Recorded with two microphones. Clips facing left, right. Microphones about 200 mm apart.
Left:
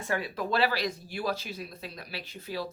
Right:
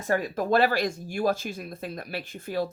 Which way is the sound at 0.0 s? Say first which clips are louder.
Right 5 dB; 45° right (ahead or behind).